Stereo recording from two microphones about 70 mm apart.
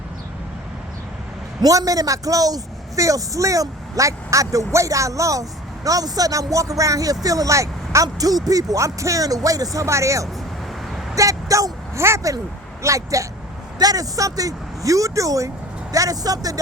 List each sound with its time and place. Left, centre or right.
1.6 s a man's voice: right
13.7 s speech: right